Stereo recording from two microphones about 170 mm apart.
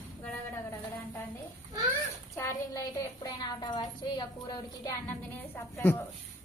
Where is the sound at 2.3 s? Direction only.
20° left (ahead or behind).